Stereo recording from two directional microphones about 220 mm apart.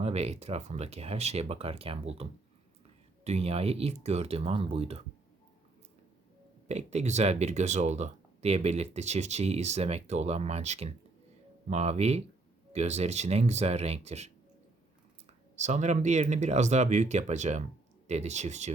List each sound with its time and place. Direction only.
0.0 s speech: 30° right (ahead or behind)
3.2 s speech: 30° right (ahead or behind)
6.7 s speech: 30° right (ahead or behind)
15.5 s speech: 30° right (ahead or behind)